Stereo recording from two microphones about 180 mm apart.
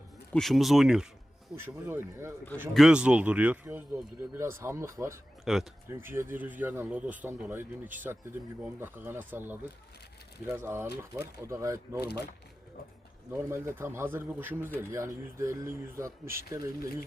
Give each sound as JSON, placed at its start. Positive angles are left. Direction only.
{"t": 0.3, "sound": "speech", "side_deg": 0}
{"t": 5.5, "sound": "speech", "side_deg": 0}
{"t": 5.9, "sound": "speech", "side_deg": -15}
{"t": 12.0, "sound": "speech", "side_deg": 65}
{"t": 13.3, "sound": "speech", "side_deg": -15}